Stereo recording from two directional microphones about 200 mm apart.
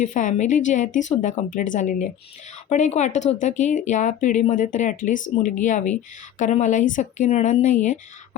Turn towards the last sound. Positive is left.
turn(degrees=35)  # may be behind; listen again after turning